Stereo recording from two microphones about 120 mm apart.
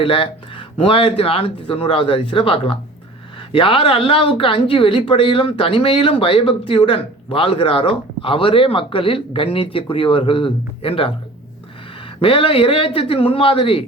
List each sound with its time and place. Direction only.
0.0 s speech: 45° left (ahead or behind)
12.2 s speech: 45° left (ahead or behind)